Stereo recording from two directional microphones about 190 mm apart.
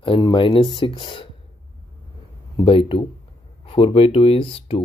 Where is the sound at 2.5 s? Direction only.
25° left (ahead or behind).